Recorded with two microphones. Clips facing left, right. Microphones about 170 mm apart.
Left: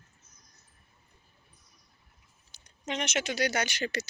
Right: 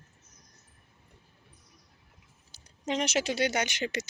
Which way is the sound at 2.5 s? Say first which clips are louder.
Right 4 dB; 35° right (ahead or behind).